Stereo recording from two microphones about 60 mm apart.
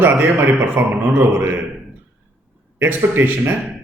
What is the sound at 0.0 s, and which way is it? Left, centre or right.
Speech, right.